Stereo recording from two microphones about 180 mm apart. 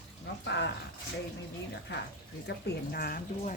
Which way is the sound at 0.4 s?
75° left (ahead or behind).